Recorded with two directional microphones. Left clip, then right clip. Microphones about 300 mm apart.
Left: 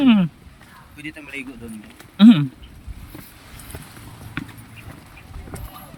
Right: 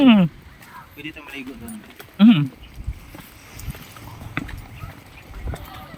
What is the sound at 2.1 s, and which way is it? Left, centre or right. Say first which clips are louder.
Speech: left 2 dB; centre.